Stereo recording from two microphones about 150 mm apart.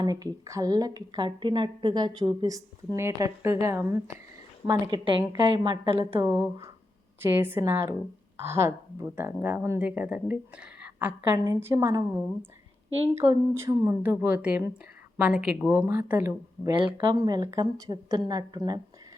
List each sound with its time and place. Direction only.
0.0 s a woman's voice: 25° right (ahead or behind)
4.7 s a woman's voice: 30° right (ahead or behind)
7.2 s a woman's voice: 15° right (ahead or behind)
16.7 s a woman's voice: 35° right (ahead or behind)
17.1 s a woman's voice: 25° right (ahead or behind)